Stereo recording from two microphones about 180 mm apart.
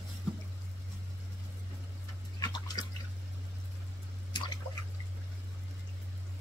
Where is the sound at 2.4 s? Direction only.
20° left (ahead or behind).